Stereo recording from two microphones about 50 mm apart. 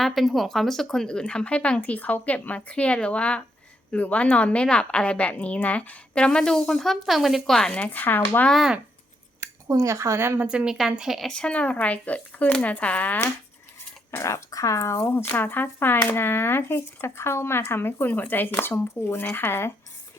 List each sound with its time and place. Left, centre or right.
0.0 s speech: centre; by 1.8 s left
1.8 s a woman's voice: left; by 7.7 s centre
7.7 s speech: left
9.4 s a sound: right
9.8 s a woman's voice: right
10.5 s a woman's voice: right
11.3 s a woman's voice: centre
14.2 s speech: left
15.3 s speech: left